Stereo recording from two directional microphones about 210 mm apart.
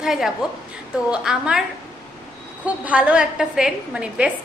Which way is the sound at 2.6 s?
5° right (ahead or behind).